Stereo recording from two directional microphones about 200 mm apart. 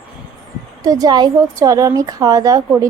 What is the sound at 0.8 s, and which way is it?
A woman's voice, 20° right (ahead or behind).